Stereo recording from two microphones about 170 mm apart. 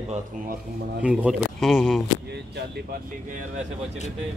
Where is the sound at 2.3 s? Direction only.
75° right (ahead or behind).